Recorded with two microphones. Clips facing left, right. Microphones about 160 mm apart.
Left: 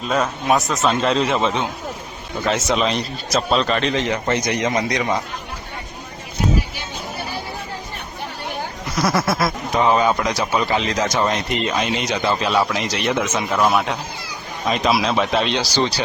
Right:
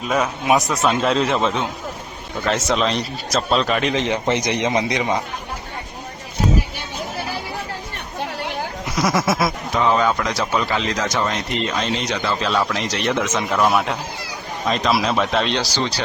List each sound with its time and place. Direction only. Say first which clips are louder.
0.0 s speech: even; 10° right (ahead or behind)
0.9 s a man's voice: even; centre (ahead or behind)
3.9 s a man's voice: right 1 dB; 20° right (ahead or behind)
9.0 s a man's voice: even; 5° left (ahead or behind)
9.8 s a man's voice: left 1 dB; 15° left (ahead or behind)